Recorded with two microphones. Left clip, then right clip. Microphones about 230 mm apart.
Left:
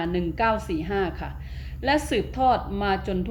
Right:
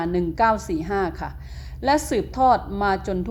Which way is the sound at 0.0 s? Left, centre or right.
Right.